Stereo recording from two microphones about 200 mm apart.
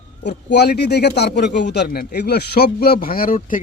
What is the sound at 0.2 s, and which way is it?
A man's voice, 55° left (ahead or behind).